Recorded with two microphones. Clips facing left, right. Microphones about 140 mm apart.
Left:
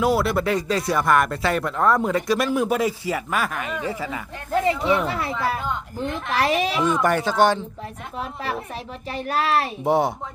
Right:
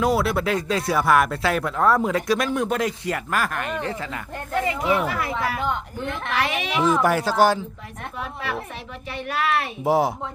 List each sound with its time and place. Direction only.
0.0 s speech: centre (ahead or behind)
4.6 s speech: 30° left (ahead or behind)
6.8 s speech: 5° right (ahead or behind)
8.2 s speech: 35° left (ahead or behind)
9.8 s speech: centre (ahead or behind)